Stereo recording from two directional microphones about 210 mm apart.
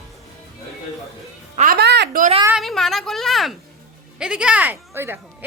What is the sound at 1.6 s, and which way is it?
Music, 45° right (ahead or behind).